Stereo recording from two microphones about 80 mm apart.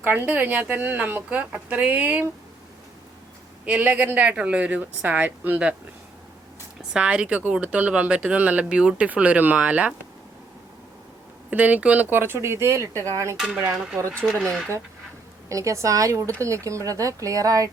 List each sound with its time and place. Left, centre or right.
0.0 s speech: right
3.7 s speech: centre
6.9 s speech: centre
11.5 s speech: centre; by 13.3 s right
13.7 s speech: centre
14.3 s speech: centre
15.4 s speech: right